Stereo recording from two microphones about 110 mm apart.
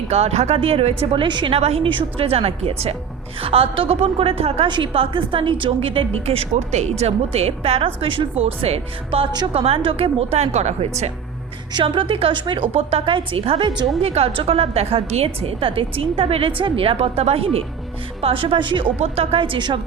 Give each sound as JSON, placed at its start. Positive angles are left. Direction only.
{"t": 0.1, "sound": "a woman's voice", "side_deg": -80}
{"t": 1.9, "sound": "a woman's voice", "side_deg": -50}
{"t": 4.7, "sound": "a woman's voice", "side_deg": -50}
{"t": 11.7, "sound": "a woman's voice", "side_deg": -50}
{"t": 18.9, "sound": "a woman's voice", "side_deg": -70}